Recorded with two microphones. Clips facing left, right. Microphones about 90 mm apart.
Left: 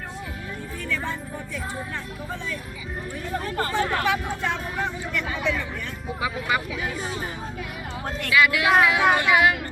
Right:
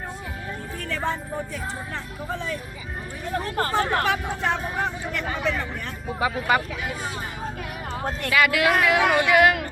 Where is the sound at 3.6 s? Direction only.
40° right (ahead or behind).